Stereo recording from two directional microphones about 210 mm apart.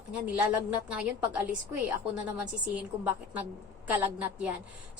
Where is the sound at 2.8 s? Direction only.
5° right (ahead or behind).